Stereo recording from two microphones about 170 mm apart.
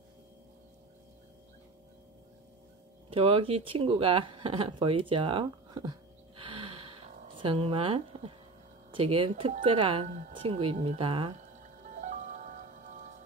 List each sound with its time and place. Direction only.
3.1 s speech: 30° right (ahead or behind)
10.0 s speech: 45° right (ahead or behind)
10.3 s speech: 35° right (ahead or behind)
11.6 s music: 45° right (ahead or behind)